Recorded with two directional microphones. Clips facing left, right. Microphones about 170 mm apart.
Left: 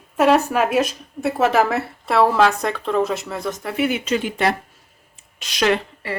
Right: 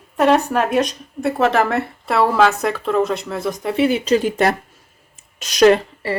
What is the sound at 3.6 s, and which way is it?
Speech, 30° right (ahead or behind).